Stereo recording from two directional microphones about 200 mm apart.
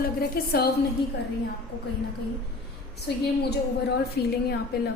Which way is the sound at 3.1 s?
55° left (ahead or behind).